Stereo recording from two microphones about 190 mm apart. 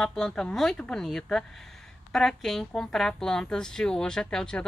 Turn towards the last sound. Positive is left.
turn(degrees=5)  # may be behind; listen again after turning